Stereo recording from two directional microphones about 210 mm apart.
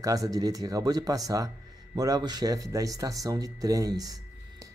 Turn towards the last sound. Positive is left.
turn(degrees=-15)  # may be behind; listen again after turning